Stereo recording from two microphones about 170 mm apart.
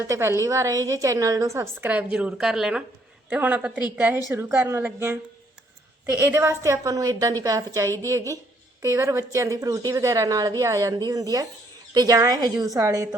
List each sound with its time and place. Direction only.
0.1 s a woman's voice: 15° right (ahead or behind)